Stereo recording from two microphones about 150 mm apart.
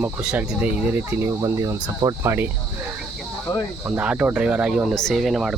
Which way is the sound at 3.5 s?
25° left (ahead or behind).